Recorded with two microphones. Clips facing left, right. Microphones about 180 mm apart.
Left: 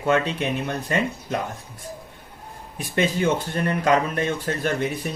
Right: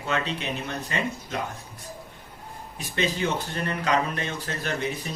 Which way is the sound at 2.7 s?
50° left (ahead or behind).